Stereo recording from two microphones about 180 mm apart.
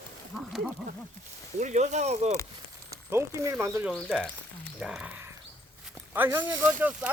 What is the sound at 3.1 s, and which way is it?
Speech, 15° right (ahead or behind).